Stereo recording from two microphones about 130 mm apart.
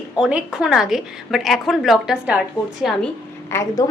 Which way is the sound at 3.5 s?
20° left (ahead or behind).